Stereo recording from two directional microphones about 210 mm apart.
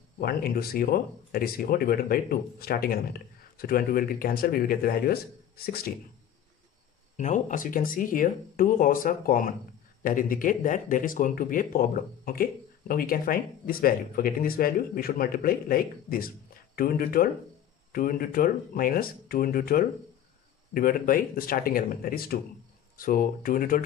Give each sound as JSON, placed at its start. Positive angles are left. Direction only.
{"t": 0.2, "sound": "speech", "side_deg": 45}
{"t": 7.2, "sound": "speech", "side_deg": 35}